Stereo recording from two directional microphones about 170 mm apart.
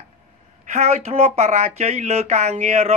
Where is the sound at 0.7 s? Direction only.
40° right (ahead or behind).